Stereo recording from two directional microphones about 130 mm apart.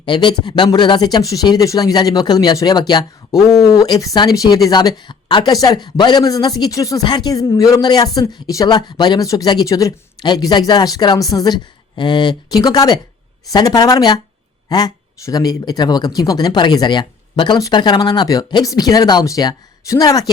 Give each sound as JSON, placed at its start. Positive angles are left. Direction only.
{"t": 0.0, "sound": "speech", "side_deg": 35}